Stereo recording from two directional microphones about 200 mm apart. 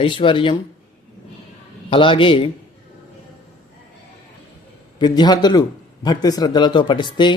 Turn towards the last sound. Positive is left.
turn(degrees=25)  # may be behind; listen again after turning